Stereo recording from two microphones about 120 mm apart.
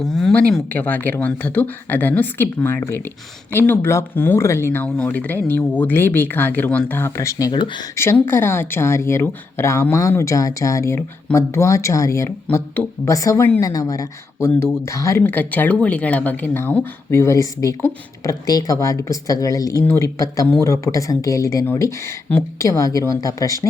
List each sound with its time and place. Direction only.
0.2 s speech: 5° left (ahead or behind); by 7.5 s 25° left (ahead or behind)
7.5 s speech: 40° left (ahead or behind)
7.9 s speech: 20° left (ahead or behind)